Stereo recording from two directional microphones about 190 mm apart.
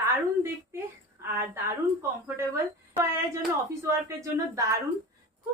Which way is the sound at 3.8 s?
15° right (ahead or behind).